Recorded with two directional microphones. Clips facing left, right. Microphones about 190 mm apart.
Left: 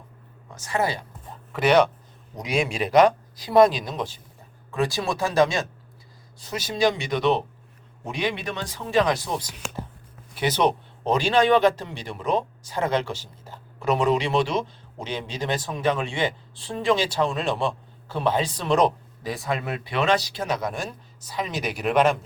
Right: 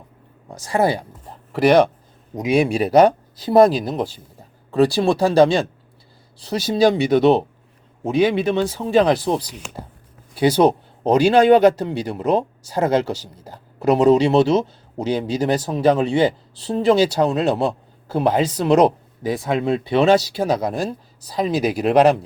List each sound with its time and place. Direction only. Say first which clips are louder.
0.6 s speech: right 7 dB; 35° right (ahead or behind)
2.3 s speech: right 10 dB; 20° right (ahead or behind)
2.6 s speech: right 4 dB; 35° right (ahead or behind)
19.4 s speech: right 5 dB; centre (ahead or behind)
19.6 s speech: right 9 dB; 30° right (ahead or behind)